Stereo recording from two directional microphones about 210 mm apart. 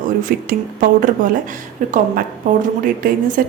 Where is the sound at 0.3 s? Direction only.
45° right (ahead or behind).